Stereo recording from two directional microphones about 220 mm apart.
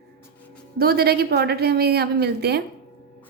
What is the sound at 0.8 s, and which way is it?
A woman's voice, 45° right (ahead or behind).